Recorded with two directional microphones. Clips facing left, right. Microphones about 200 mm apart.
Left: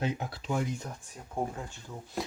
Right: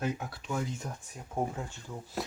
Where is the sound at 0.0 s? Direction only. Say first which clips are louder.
Left 1 dB; 25° left (ahead or behind).